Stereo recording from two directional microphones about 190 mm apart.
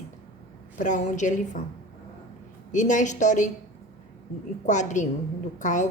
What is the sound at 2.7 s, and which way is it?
Speech, 40° left (ahead or behind).